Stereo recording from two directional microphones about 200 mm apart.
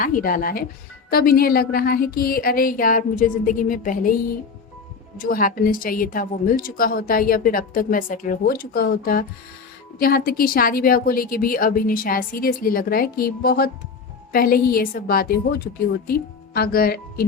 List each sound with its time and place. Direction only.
0.0 s a woman's voice: 45° left (ahead or behind)
5.2 s a woman's voice: 45° left (ahead or behind)